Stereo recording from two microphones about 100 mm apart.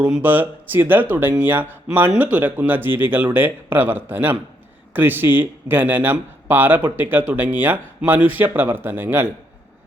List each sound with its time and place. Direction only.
0.0 s speech: 15° right (ahead or behind)